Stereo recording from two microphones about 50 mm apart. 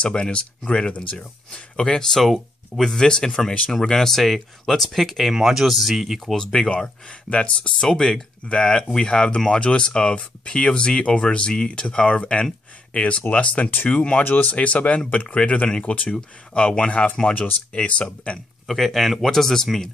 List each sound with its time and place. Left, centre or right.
0.0 s speech: left
2.1 s speech: centre
2.7 s speech: centre
5.3 s speech: centre
6.3 s speech: centre
18.7 s speech: centre